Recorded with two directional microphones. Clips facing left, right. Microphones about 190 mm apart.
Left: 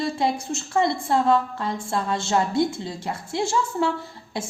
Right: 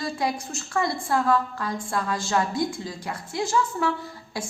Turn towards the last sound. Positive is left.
turn(degrees=25)  # may be behind; listen again after turning